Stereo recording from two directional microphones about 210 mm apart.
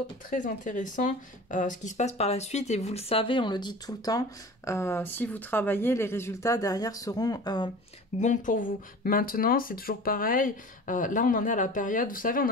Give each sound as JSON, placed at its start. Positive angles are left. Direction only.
{"t": 0.3, "sound": "speech", "side_deg": 40}
{"t": 8.2, "sound": "speech", "side_deg": 35}